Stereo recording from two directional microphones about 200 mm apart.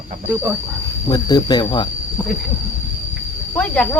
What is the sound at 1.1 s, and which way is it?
Speech, 20° left (ahead or behind).